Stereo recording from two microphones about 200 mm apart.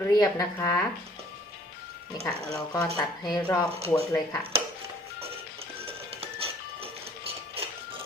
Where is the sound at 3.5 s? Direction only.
15° left (ahead or behind).